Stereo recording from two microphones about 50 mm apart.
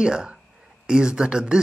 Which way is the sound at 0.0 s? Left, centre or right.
Centre.